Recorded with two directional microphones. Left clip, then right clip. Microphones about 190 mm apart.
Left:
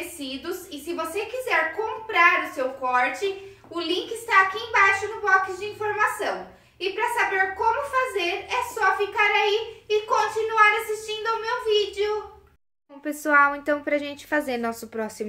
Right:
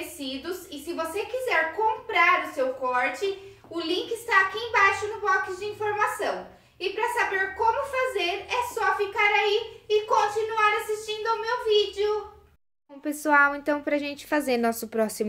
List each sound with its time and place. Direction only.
0.8 s a woman's voice: 5° left (ahead or behind)
13.0 s a woman's voice: 15° right (ahead or behind); by 15.2 s 45° right (ahead or behind)